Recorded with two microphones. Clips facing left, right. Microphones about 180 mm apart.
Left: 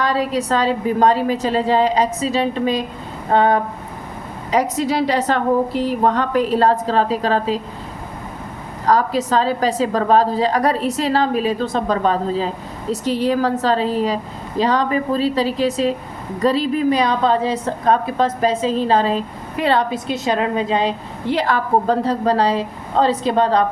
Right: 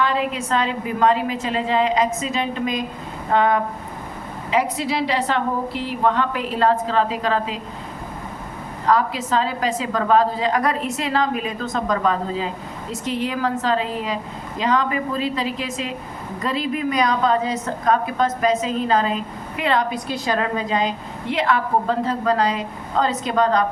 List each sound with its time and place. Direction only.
0.0 s a woman's voice: 35° left (ahead or behind)
4.5 s a woman's voice: 45° left (ahead or behind)
8.9 s a woman's voice: 40° left (ahead or behind)